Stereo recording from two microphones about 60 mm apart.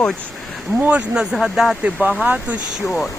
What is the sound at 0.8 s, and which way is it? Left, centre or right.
Speech, right.